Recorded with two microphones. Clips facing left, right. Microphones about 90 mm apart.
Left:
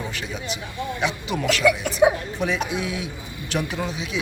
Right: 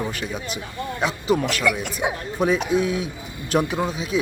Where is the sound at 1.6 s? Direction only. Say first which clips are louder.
Left 3 dB; centre (ahead or behind).